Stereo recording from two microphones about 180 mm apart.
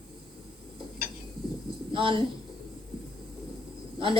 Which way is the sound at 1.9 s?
30° right (ahead or behind).